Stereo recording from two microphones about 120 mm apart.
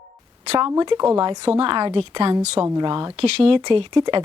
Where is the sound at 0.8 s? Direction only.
40° right (ahead or behind).